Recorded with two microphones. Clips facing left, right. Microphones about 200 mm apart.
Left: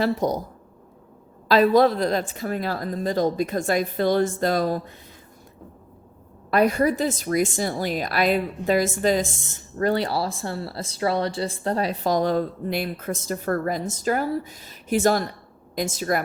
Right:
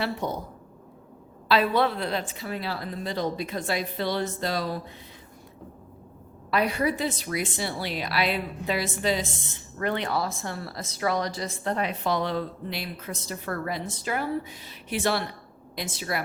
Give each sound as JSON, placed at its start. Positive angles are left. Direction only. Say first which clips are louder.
{"t": 0.0, "sound": "speech", "louder": "left 7 dB", "side_deg": 40}
{"t": 1.5, "sound": "a woman's voice", "louder": "left 6 dB", "side_deg": 40}
{"t": 6.5, "sound": "a woman's voice", "louder": "left 6 dB", "side_deg": 45}